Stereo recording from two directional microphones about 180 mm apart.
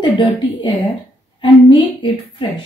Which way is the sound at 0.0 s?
25° left (ahead or behind).